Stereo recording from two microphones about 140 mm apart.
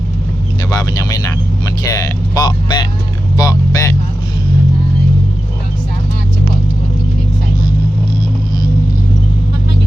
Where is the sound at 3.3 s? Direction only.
25° left (ahead or behind).